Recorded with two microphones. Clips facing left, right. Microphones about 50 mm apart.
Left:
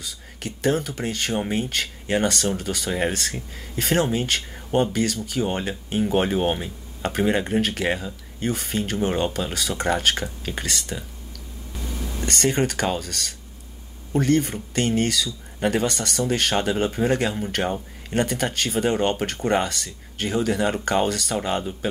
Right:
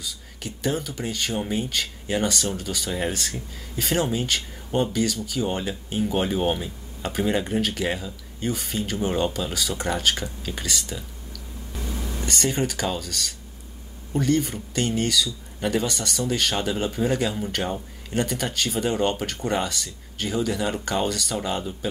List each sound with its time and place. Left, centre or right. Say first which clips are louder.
0.0 s speech: left 1 dB; left
7.0 s speech: left 2 dB; left
7.6 s speech: left 2 dB; left
9.5 s speech: left 3 dB; left
12.3 s speech: left 3 dB; left